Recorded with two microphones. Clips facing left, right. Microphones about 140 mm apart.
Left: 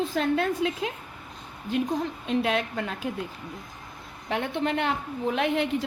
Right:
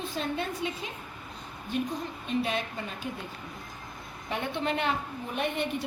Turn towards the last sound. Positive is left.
turn(degrees=90)